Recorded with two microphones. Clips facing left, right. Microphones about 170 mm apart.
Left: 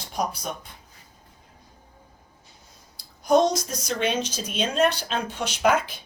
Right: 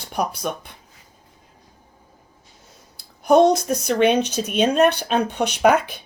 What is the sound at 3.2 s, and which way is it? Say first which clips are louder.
Speech: right 5 dB; 60° right (ahead or behind).